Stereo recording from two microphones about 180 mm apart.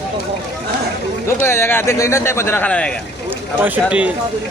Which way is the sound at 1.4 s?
15° left (ahead or behind).